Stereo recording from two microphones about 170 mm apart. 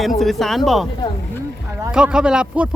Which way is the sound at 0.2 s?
Centre (ahead or behind).